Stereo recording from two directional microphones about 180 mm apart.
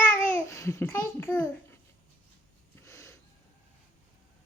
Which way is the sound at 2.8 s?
15° left (ahead or behind).